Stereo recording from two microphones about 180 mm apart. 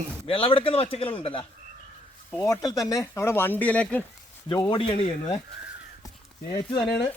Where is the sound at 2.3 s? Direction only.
15° left (ahead or behind).